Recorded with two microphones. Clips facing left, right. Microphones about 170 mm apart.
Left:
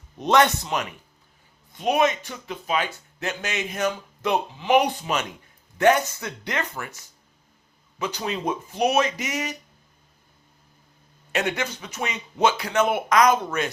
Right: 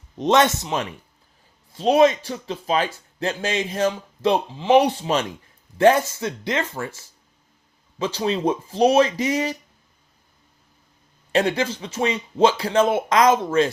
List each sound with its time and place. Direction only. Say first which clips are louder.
0.2 s speech: right 2 dB; 25° right (ahead or behind)
11.3 s speech: right 5 dB; 30° right (ahead or behind)